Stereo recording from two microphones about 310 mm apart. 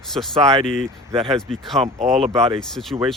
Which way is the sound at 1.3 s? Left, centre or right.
Centre.